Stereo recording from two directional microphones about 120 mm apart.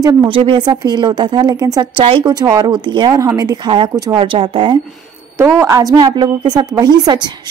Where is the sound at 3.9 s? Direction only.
30° right (ahead or behind).